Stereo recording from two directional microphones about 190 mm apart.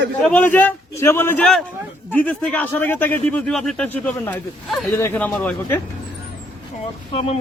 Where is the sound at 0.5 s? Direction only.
10° left (ahead or behind).